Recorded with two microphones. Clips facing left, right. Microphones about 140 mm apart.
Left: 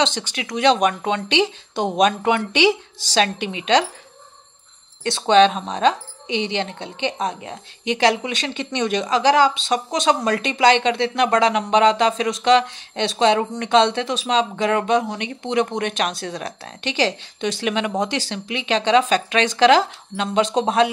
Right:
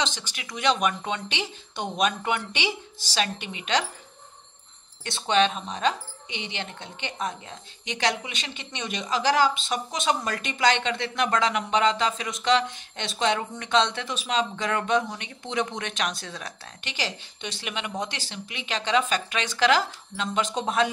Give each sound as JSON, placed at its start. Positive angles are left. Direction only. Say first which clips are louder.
{"t": 0.0, "sound": "speech", "louder": "left 8 dB", "side_deg": 70}
{"t": 5.0, "sound": "speech", "louder": "left 9 dB", "side_deg": 90}
{"t": 6.6, "sound": "speech", "louder": "left 10 dB", "side_deg": 80}
{"t": 10.2, "sound": "speech", "louder": "left 8 dB", "side_deg": 75}
{"t": 14.6, "sound": "speech", "louder": "left 6 dB", "side_deg": 65}